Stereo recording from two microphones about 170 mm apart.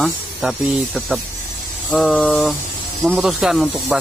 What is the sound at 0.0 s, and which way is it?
Speech, 5° right (ahead or behind).